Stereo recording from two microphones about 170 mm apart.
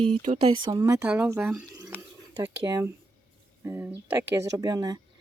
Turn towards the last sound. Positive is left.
turn(degrees=-20)  # may be behind; listen again after turning